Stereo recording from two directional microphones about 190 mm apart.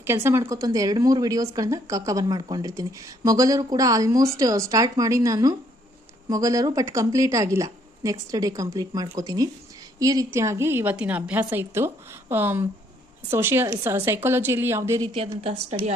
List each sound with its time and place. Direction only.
0.0 s a woman's voice: 10° right (ahead or behind)
15.1 s a woman's voice: 30° right (ahead or behind)